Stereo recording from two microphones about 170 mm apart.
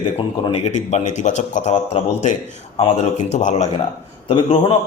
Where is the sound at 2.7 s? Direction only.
40° left (ahead or behind).